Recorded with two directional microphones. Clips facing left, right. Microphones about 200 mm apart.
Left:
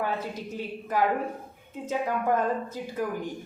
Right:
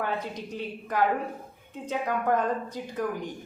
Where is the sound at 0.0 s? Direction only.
5° left (ahead or behind).